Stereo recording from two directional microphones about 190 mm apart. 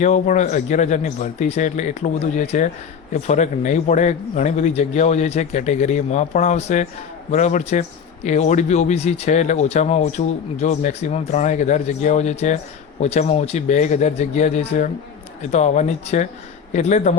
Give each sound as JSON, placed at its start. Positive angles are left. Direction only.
{"t": 0.0, "sound": "speech", "side_deg": 40}